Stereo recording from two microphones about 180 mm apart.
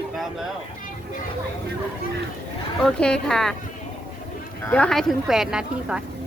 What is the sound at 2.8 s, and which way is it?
Speech, 5° left (ahead or behind).